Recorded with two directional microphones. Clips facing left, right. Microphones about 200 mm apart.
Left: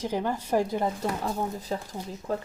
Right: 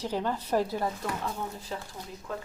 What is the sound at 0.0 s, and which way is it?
Speech, 15° left (ahead or behind).